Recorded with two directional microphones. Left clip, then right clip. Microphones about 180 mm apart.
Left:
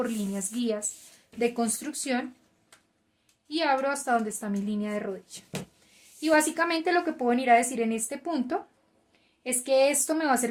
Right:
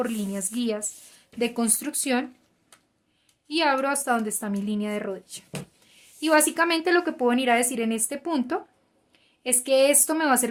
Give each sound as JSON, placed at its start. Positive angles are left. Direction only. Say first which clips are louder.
{"t": 0.0, "sound": "a woman's voice", "louder": "right 2 dB", "side_deg": -25}
{"t": 3.5, "sound": "a woman's voice", "louder": "right 3 dB", "side_deg": -35}